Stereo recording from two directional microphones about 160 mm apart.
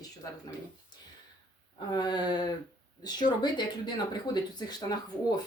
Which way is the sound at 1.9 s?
25° left (ahead or behind).